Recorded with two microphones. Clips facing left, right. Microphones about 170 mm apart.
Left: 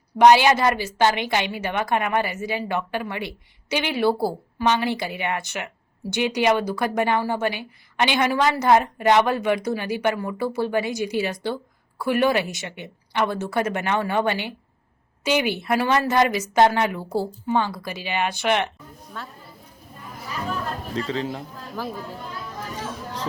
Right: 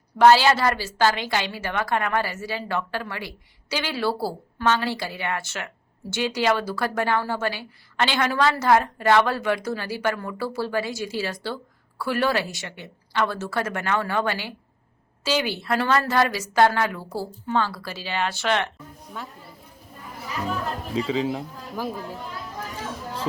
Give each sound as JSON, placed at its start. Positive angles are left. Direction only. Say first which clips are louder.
{"t": 0.2, "sound": "a woman's voice", "louder": "left 1 dB", "side_deg": 15}
{"t": 19.2, "sound": "speech", "louder": "even", "side_deg": -15}
{"t": 20.2, "sound": "chatter", "louder": "right 1 dB", "side_deg": -15}
{"t": 20.9, "sound": "speech", "louder": "right 3 dB", "side_deg": -5}